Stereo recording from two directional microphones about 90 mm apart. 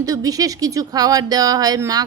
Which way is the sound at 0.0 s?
40° right (ahead or behind).